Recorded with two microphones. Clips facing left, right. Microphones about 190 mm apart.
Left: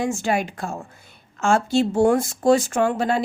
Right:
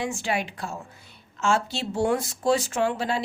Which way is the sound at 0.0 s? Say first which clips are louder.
Left 5 dB; 45° left (ahead or behind).